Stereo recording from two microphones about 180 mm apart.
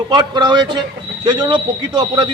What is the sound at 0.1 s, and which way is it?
A man's voice, 25° right (ahead or behind).